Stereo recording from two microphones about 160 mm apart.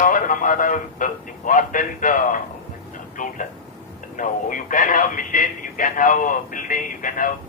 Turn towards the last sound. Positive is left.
turn(degrees=55)  # may be behind; listen again after turning